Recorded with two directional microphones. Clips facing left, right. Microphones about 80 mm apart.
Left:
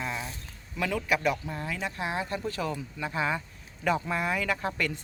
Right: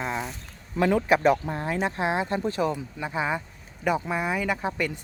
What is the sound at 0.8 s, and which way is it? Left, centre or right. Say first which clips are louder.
Speech: right 7 dB; right.